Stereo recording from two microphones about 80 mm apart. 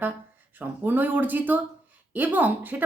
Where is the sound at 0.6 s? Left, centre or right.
Right.